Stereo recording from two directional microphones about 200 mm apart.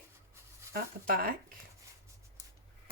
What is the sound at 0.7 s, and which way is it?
Speech, 45° right (ahead or behind).